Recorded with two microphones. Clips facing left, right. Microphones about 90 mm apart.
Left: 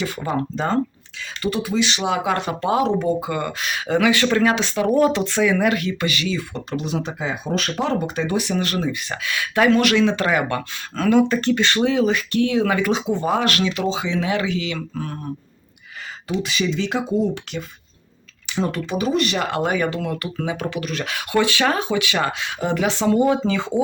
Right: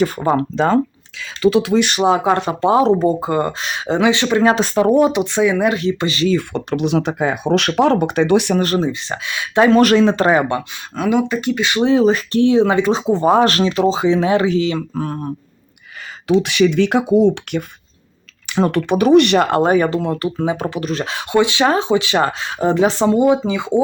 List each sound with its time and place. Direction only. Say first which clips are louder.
0.0 s speech: right 9 dB; 45° right (ahead or behind)
0.3 s speech: right 4 dB; 90° right
1.8 s speech: right 5 dB; 45° right (ahead or behind)
2.0 s speech: right 6 dB; 30° right (ahead or behind)
4.5 s speech: right 6 dB; 40° right (ahead or behind)
4.9 s speech: right 1 dB; 20° right (ahead or behind)
6.2 s speech: right 8 dB; 60° right (ahead or behind)
8.5 s speech: right 6 dB; 35° right (ahead or behind)
10.5 s speech: right 4 dB; 15° right (ahead or behind)
11.8 s speech: right 5 dB; 30° right (ahead or behind)
16.4 s speech: right 7 dB; 65° right (ahead or behind)
19.4 s speech: right 7 dB; 40° right (ahead or behind)
23.0 s speech: even; 20° right (ahead or behind)